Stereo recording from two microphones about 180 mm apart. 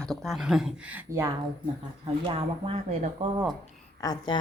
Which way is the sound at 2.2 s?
30° right (ahead or behind).